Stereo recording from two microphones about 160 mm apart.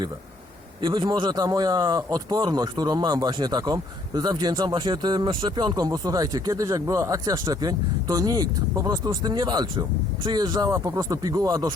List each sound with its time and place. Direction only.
0.8 s a man's voice: 30° right (ahead or behind)